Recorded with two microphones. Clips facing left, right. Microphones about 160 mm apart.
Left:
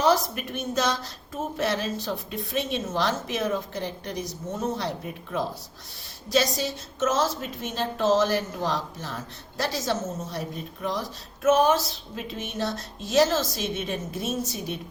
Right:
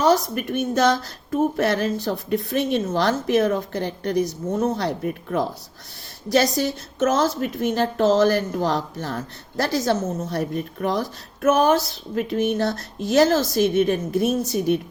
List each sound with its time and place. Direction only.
0.0 s a woman's voice: 50° right (ahead or behind)